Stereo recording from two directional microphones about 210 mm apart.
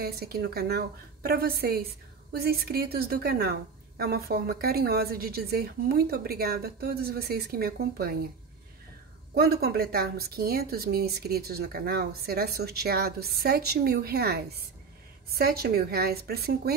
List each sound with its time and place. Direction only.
0.0 s speech: 50° right (ahead or behind)
9.3 s speech: 45° right (ahead or behind)